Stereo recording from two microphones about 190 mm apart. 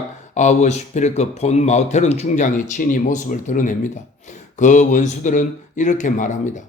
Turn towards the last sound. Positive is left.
turn(degrees=40)  # may be behind; listen again after turning